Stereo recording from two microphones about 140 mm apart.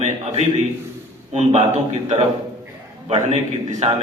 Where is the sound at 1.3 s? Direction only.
55° right (ahead or behind).